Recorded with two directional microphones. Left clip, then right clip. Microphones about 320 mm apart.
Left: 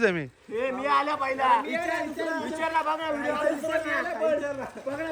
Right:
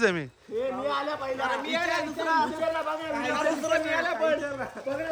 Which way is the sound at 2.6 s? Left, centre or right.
Centre.